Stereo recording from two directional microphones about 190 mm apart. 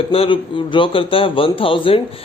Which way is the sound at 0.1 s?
30° left (ahead or behind).